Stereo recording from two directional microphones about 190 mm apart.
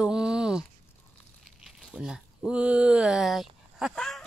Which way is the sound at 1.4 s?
Centre (ahead or behind).